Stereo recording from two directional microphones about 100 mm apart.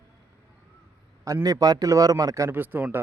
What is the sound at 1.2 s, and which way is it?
A man's voice, 35° right (ahead or behind).